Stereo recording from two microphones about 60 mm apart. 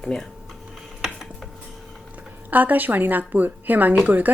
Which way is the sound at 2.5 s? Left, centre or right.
Right.